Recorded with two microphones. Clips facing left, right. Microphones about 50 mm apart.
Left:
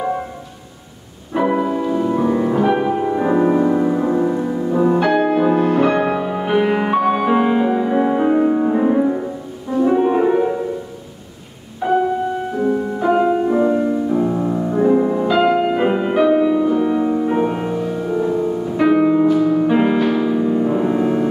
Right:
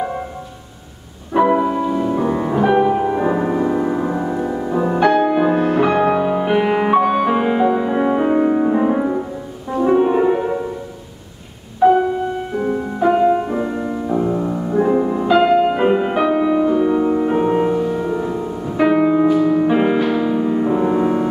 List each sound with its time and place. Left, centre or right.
1.4 s music: centre
11.8 s music: centre
12.5 s music: right
13.0 s music: centre
13.9 s music: centre